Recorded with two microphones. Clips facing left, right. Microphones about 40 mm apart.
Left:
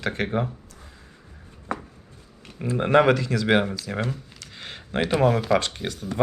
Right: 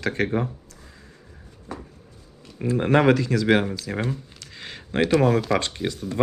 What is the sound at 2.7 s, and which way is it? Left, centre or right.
Speech, centre.